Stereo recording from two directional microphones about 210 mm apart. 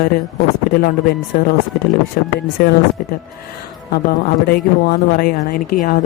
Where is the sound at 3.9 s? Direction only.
45° left (ahead or behind).